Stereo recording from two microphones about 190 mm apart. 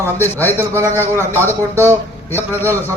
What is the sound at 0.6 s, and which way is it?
Speech, 15° right (ahead or behind).